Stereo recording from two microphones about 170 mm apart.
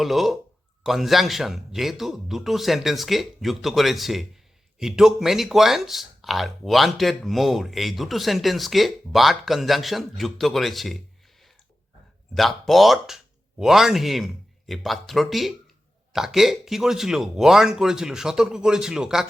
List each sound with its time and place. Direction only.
0.0 s speech: centre (ahead or behind)